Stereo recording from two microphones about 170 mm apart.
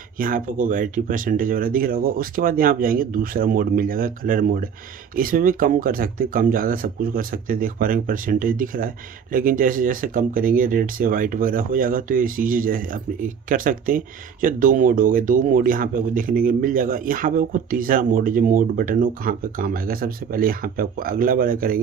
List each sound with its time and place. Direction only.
0.2 s speech: 50° right (ahead or behind)